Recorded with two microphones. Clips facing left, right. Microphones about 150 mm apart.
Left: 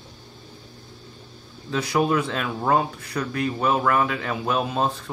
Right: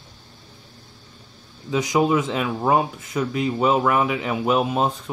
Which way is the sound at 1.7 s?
15° right (ahead or behind).